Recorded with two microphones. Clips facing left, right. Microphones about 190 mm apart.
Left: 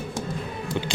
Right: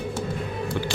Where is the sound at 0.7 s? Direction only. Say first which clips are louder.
Left 2 dB; 20° left (ahead or behind).